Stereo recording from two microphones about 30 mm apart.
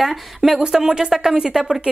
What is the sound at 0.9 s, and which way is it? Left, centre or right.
Speech, centre.